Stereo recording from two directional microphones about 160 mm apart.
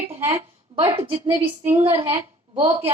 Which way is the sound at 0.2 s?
40° right (ahead or behind).